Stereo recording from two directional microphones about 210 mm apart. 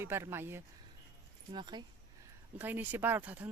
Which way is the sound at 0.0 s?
10° right (ahead or behind).